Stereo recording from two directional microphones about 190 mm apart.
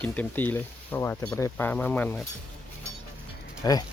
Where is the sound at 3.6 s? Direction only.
20° left (ahead or behind).